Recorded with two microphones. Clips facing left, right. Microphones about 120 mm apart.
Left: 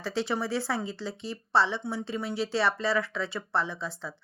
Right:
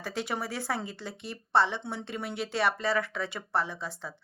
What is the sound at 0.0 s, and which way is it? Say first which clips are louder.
Speech: left 4 dB; 45° right (ahead or behind).